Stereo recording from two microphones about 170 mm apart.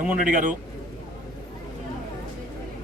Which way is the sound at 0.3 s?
50° right (ahead or behind).